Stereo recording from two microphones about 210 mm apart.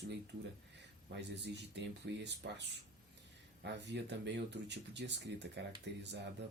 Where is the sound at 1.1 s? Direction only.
55° right (ahead or behind).